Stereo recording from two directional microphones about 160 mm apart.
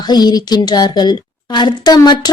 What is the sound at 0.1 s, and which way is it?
Speech, 25° left (ahead or behind).